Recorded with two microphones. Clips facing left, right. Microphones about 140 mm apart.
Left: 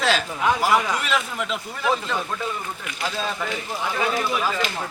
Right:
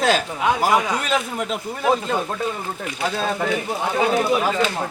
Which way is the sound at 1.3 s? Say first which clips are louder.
Right 3 dB; 40° right (ahead or behind).